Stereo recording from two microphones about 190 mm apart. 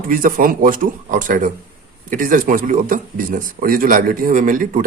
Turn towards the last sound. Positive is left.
turn(degrees=-45)  # may be behind; listen again after turning